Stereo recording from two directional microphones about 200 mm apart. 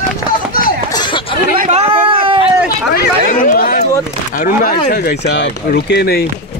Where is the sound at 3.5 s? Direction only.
45° left (ahead or behind).